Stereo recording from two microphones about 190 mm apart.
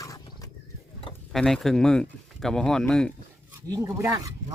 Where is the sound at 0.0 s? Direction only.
20° left (ahead or behind).